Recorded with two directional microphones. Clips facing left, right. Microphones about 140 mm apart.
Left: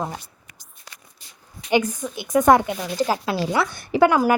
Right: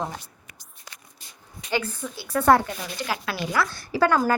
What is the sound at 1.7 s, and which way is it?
Speech, 15° left (ahead or behind).